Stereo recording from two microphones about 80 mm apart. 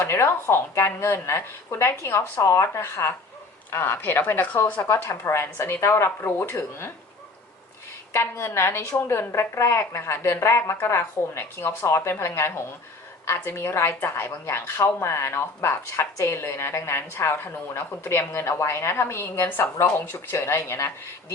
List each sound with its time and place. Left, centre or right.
0.0 s a woman's voice: left
2.4 s a woman's voice: left
8.1 s a woman's voice: left